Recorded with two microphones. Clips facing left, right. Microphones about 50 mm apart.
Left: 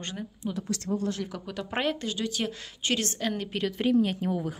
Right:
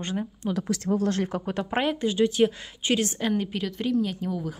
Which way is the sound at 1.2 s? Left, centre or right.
Right.